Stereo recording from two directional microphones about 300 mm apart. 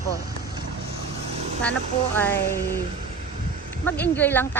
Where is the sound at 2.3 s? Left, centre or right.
Left.